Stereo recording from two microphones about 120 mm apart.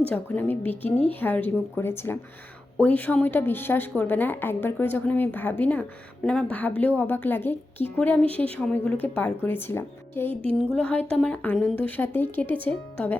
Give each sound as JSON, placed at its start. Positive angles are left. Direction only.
{"t": 0.1, "sound": "a woman's voice", "side_deg": 15}
{"t": 10.7, "sound": "a woman's voice", "side_deg": 10}